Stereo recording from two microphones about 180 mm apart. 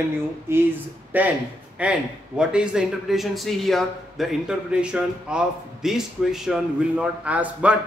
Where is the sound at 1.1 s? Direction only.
10° right (ahead or behind).